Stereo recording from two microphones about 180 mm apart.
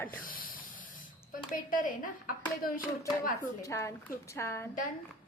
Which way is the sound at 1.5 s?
50° left (ahead or behind).